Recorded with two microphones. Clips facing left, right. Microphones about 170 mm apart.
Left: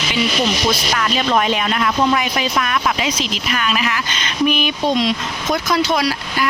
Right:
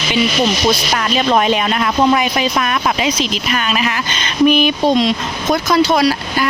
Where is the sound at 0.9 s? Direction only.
30° right (ahead or behind).